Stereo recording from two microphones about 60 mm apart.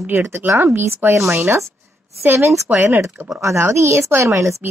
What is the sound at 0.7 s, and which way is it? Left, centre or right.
Speech, right.